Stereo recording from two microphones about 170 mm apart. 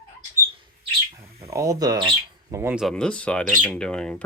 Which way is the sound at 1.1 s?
20° right (ahead or behind).